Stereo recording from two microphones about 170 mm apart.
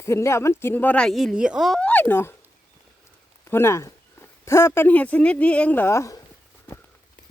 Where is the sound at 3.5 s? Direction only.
15° left (ahead or behind).